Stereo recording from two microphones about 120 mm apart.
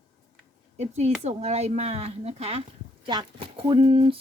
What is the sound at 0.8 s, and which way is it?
Speech, 65° right (ahead or behind).